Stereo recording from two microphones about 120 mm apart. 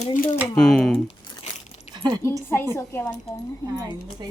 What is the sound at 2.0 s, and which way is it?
Speech, 35° right (ahead or behind).